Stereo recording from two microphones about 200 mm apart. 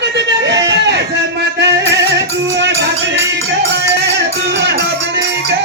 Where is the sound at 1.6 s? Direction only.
60° right (ahead or behind).